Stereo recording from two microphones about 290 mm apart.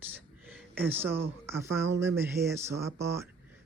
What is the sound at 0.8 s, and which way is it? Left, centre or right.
Speech, centre.